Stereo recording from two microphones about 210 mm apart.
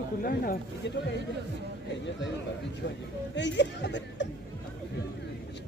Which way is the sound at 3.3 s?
55° left (ahead or behind).